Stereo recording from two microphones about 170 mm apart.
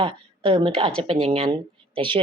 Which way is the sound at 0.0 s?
30° right (ahead or behind).